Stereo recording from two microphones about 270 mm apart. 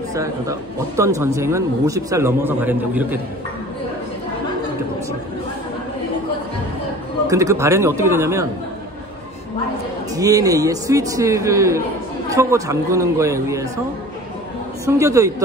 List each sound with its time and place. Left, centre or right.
0.1 s speech: centre
7.2 s speech: centre
10.1 s speech: centre
14.9 s speech: centre